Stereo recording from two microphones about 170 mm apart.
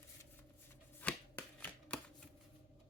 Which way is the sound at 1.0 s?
10° left (ahead or behind).